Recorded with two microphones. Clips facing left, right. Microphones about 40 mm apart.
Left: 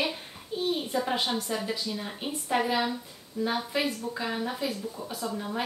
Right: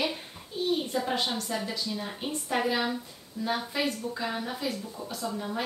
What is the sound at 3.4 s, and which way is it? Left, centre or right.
Speech, left.